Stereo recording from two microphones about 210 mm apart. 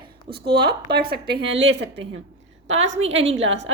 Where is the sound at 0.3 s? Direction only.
50° right (ahead or behind).